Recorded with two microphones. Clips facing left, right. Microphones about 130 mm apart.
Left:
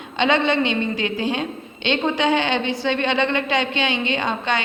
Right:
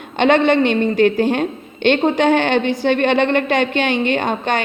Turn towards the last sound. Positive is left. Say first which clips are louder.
# right 4 dB
turn(degrees=-50)  # may be behind; listen again after turning